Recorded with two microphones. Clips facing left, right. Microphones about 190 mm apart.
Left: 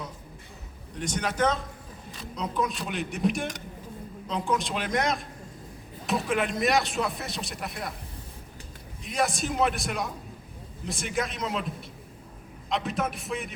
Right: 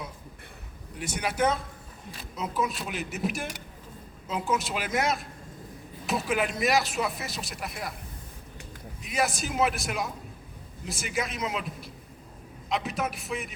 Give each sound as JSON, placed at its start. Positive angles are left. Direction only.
{"t": 0.9, "sound": "a man's voice", "side_deg": -10}
{"t": 9.0, "sound": "speech", "side_deg": 0}